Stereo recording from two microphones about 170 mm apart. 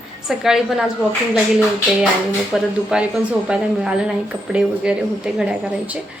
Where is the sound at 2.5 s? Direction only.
5° right (ahead or behind).